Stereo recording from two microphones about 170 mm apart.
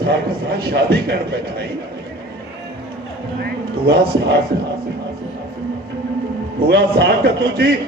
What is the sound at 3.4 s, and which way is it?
A man's voice, 75° right (ahead or behind).